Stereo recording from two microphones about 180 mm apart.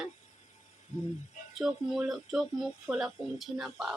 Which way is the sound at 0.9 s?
45° left (ahead or behind).